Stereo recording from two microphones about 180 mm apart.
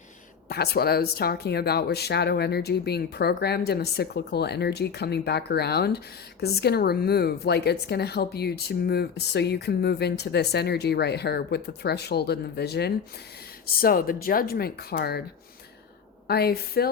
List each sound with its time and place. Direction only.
0.4 s speech: 60° left (ahead or behind)
13.8 s speech: 55° left (ahead or behind)
16.2 s speech: 60° left (ahead or behind)